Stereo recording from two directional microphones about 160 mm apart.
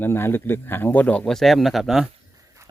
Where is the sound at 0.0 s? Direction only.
15° left (ahead or behind); by 2.0 s centre (ahead or behind).